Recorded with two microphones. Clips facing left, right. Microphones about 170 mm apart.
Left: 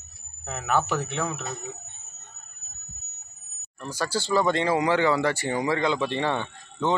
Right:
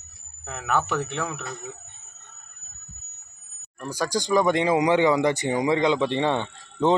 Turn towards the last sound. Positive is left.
turn(degrees=-20)  # may be behind; listen again after turning